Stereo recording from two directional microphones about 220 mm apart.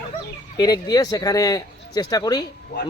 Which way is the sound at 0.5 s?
15° left (ahead or behind).